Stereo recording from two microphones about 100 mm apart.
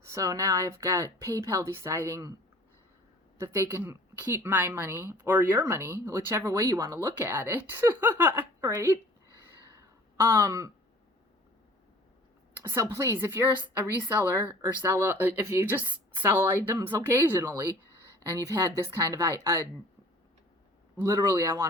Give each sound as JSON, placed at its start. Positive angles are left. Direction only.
{"t": 0.0, "sound": "a woman's voice", "side_deg": -35}
{"t": 3.3, "sound": "a woman's voice", "side_deg": -25}
{"t": 9.6, "sound": "a sound", "side_deg": -35}
{"t": 12.6, "sound": "a woman's voice", "side_deg": -30}
{"t": 21.0, "sound": "a woman's voice", "side_deg": -30}